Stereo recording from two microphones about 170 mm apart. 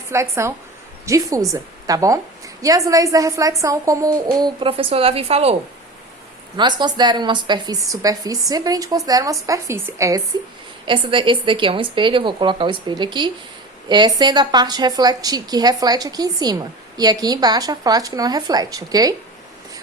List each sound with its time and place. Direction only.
0.1 s a woman's voice: 15° right (ahead or behind); by 5.5 s 35° right (ahead or behind)
6.6 s a woman's voice: 25° right (ahead or behind)
10.8 s a woman's voice: 30° right (ahead or behind)